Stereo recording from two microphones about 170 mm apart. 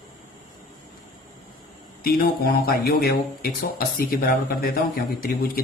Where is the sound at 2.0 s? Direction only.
60° left (ahead or behind).